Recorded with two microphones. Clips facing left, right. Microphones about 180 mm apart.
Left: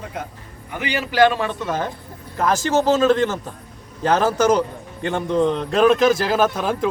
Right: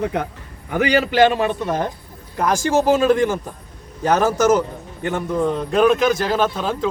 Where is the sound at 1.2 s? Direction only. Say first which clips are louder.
Left 2 dB; 20° right (ahead or behind); by 6.7 s 10° left (ahead or behind).